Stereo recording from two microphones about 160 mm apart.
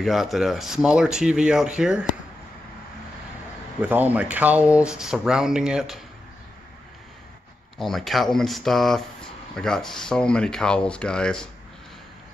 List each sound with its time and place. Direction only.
0.0 s speech: centre (ahead or behind)
3.8 s speech: 10° right (ahead or behind)
7.7 s speech: centre (ahead or behind)